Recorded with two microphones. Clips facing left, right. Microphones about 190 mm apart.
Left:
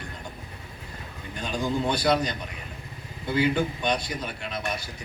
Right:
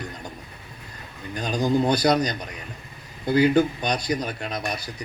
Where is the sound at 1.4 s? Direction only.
40° right (ahead or behind).